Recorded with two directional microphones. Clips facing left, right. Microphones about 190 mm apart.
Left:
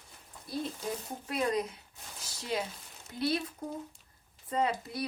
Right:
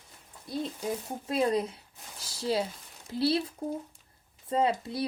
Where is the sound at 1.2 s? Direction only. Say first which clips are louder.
Right 4 dB; 30° right (ahead or behind).